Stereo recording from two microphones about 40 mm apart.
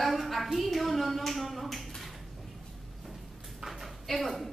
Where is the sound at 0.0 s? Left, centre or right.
Centre.